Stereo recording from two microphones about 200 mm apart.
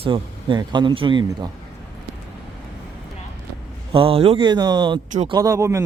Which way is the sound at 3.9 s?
25° right (ahead or behind).